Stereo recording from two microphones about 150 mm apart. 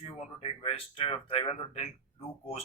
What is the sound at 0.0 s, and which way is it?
Speech, 40° left (ahead or behind).